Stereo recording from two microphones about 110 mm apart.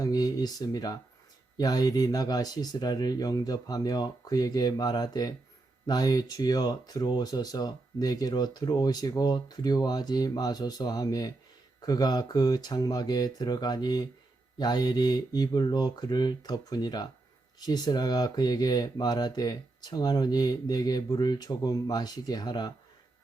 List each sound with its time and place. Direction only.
0.0 s speech: 35° left (ahead or behind)